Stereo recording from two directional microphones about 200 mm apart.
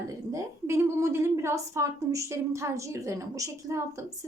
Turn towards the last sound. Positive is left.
turn(degrees=-15)  # may be behind; listen again after turning